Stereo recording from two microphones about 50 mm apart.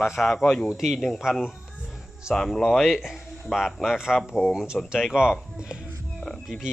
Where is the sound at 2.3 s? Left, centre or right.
Centre.